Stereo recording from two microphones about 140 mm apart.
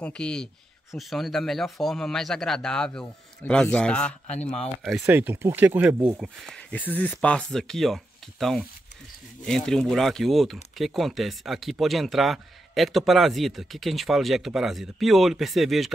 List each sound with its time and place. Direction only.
0.0 s a man's voice: 5° left (ahead or behind)
5.0 s speech: 15° right (ahead or behind)
6.4 s speech: 5° left (ahead or behind)